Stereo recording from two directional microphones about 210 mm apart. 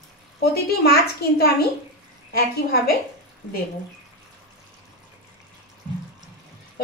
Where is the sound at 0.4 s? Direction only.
50° left (ahead or behind).